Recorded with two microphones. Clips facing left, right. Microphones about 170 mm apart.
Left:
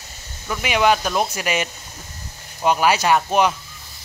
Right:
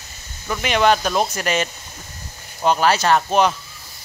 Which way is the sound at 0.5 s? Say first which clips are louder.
Right 1 dB; 5° left (ahead or behind).